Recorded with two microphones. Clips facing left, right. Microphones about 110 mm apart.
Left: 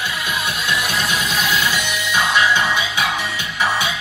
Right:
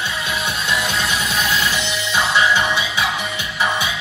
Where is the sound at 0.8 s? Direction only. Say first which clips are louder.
Even; 15° left (ahead or behind).